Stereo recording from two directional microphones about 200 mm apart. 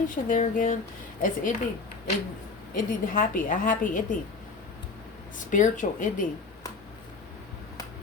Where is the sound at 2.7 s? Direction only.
45° left (ahead or behind).